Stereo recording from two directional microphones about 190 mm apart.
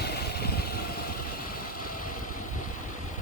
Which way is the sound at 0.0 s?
55° left (ahead or behind).